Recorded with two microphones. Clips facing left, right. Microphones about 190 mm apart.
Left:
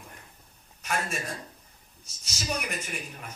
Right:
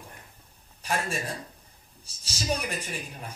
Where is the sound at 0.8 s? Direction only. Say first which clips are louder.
Right 1 dB; 30° right (ahead or behind).